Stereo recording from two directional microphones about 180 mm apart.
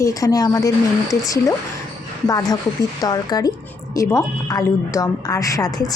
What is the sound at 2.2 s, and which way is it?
A woman's voice, 20° left (ahead or behind).